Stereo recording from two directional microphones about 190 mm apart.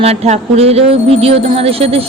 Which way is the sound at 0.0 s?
30° right (ahead or behind).